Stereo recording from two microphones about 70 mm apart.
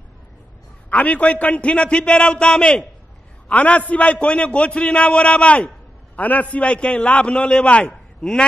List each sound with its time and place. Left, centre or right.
0.8 s a man's voice: left